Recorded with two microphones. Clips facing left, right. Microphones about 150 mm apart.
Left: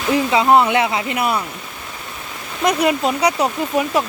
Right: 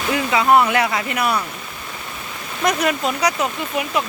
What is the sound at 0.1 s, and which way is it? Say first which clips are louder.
Speech: left 2 dB; 25° left (ahead or behind).